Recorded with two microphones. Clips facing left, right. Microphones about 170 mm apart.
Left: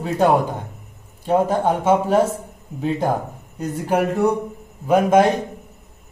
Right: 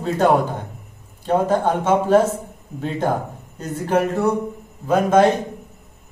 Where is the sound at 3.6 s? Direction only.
15° left (ahead or behind).